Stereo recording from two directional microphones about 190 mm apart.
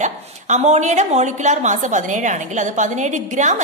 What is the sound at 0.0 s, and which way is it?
A woman's voice, 40° right (ahead or behind).